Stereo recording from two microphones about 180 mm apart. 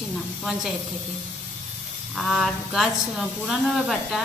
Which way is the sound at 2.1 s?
Centre (ahead or behind).